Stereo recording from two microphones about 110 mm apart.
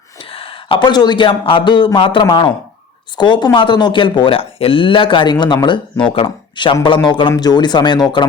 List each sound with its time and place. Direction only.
0.3 s speech: 55° left (ahead or behind)